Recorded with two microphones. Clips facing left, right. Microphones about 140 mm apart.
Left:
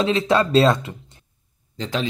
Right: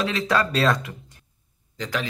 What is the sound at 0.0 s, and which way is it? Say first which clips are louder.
Speech: left 4 dB; 25° left (ahead or behind).